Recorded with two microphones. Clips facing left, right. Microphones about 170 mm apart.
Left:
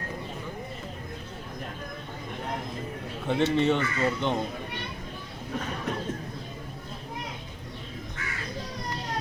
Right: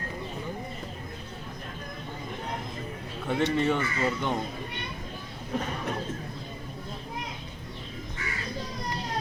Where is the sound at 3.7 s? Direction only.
25° left (ahead or behind).